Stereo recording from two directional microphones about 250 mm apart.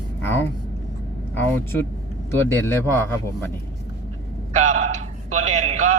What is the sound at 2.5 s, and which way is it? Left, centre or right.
Speech, centre.